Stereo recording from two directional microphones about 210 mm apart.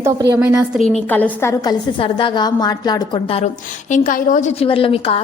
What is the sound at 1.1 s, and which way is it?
Speech, 10° left (ahead or behind).